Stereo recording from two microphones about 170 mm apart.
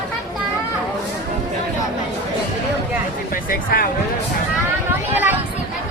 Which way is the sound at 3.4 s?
55° left (ahead or behind).